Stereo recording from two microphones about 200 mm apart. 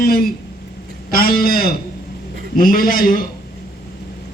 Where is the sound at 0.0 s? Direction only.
45° left (ahead or behind).